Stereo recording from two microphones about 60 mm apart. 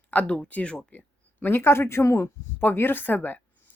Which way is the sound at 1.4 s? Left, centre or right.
Left.